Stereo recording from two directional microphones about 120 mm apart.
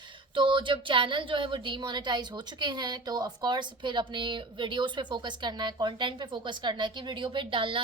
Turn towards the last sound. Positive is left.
turn(degrees=-45)  # may be behind; listen again after turning